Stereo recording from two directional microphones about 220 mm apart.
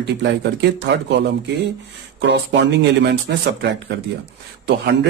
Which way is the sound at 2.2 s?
50° right (ahead or behind).